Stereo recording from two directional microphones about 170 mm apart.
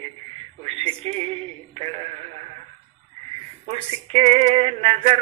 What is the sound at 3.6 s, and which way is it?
Male singing, 35° right (ahead or behind).